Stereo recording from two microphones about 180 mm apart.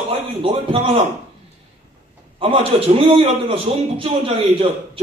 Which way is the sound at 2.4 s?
30° right (ahead or behind).